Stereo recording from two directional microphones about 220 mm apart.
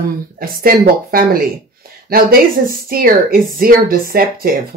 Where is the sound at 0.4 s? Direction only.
40° right (ahead or behind).